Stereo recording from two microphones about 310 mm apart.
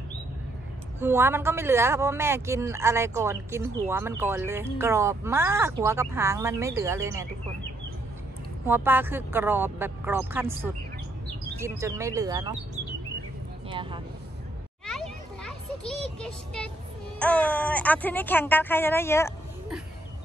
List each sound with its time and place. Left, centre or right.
0.9 s speech: centre
8.6 s speech: centre
13.7 s speech: centre
14.9 s children playing: centre
17.2 s speech: centre